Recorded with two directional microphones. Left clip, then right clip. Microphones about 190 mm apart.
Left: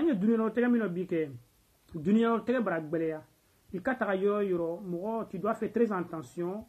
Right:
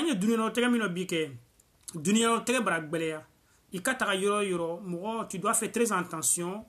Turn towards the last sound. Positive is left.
turn(degrees=-30)  # may be behind; listen again after turning